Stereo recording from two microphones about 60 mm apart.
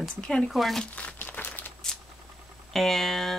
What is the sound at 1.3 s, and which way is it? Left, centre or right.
Crumpling, left.